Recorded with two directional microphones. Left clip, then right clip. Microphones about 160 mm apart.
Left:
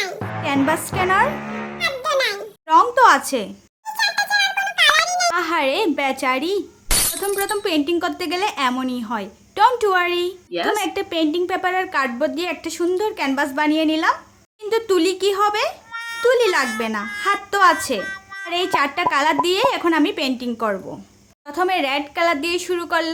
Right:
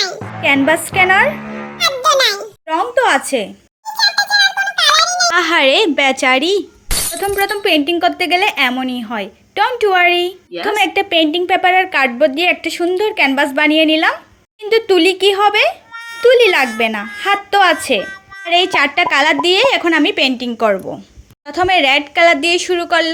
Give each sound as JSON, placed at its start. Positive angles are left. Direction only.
{"t": 0.4, "sound": "a woman's voice", "side_deg": -15}
{"t": 1.4, "sound": "music", "side_deg": -25}
{"t": 3.0, "sound": "speech", "side_deg": 40}
{"t": 3.9, "sound": "a sound", "side_deg": 15}
{"t": 5.3, "sound": "a woman's voice", "side_deg": -15}
{"t": 16.0, "sound": "a woman's voice", "side_deg": 0}